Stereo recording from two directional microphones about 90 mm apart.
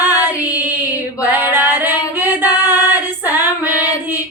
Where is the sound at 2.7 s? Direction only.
20° right (ahead or behind).